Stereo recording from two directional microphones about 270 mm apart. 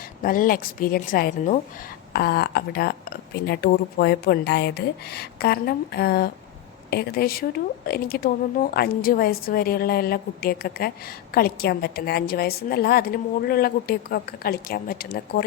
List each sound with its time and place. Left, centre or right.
0.2 s speech: left